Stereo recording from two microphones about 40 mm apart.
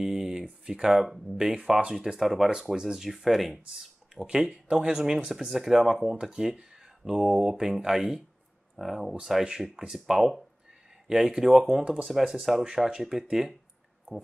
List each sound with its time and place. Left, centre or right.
0.0 s a sound: centre
1.0 s speech: centre
1.4 s speech: centre
2.1 s speech: centre
3.6 s speech: centre